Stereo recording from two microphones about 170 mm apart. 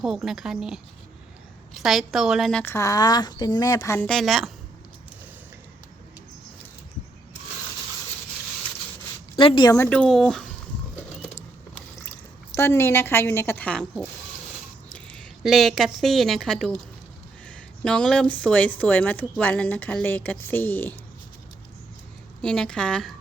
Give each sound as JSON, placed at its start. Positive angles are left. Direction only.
{"t": 0.0, "sound": "a woman's voice", "side_deg": 0}
{"t": 2.6, "sound": "speech", "side_deg": 20}
{"t": 4.0, "sound": "a woman's voice", "side_deg": 0}
{"t": 9.3, "sound": "speech", "side_deg": 30}
{"t": 12.5, "sound": "a woman's voice", "side_deg": 15}
{"t": 22.4, "sound": "a woman's voice", "side_deg": 5}